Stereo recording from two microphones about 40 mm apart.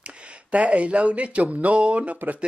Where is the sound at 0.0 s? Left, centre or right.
Right.